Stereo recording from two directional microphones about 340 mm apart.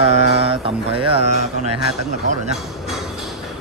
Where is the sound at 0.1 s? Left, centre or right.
Left.